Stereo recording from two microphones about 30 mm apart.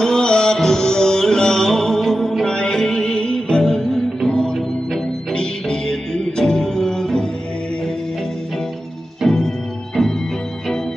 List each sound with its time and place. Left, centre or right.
0.0 s music: left
5.3 s music: left
9.2 s music: centre